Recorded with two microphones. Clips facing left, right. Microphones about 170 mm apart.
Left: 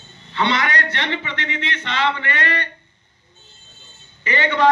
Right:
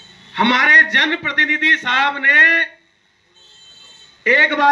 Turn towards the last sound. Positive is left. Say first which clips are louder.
# right 4 dB
turn(degrees=-75)  # may be behind; listen again after turning